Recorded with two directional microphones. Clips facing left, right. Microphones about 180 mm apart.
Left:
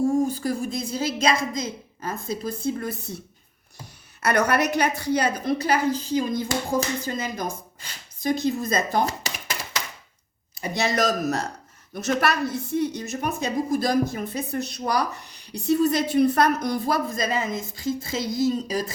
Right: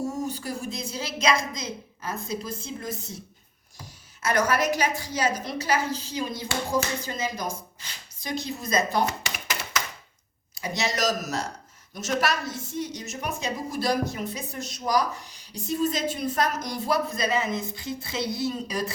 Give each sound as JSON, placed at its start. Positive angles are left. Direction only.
{"t": 0.0, "sound": "a woman's voice", "side_deg": 55}
{"t": 4.2, "sound": "a woman's voice", "side_deg": 60}
{"t": 8.2, "sound": "speech", "side_deg": 50}
{"t": 9.0, "sound": "a sound", "side_deg": 35}
{"t": 10.5, "sound": "a woman's voice", "side_deg": 55}